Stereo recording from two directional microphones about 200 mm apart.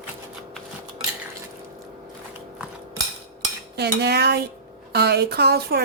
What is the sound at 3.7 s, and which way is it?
Speech, 55° right (ahead or behind).